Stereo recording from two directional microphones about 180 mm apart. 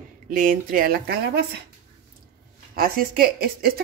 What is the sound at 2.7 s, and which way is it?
Speech, 55° right (ahead or behind).